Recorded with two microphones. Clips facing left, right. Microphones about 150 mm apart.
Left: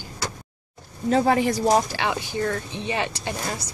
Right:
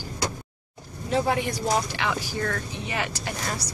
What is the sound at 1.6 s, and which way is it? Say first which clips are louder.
A woman's voice: left 2 dB; 35° left (ahead or behind).